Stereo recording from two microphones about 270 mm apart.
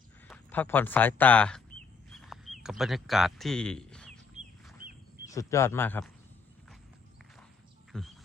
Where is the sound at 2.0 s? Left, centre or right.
Centre.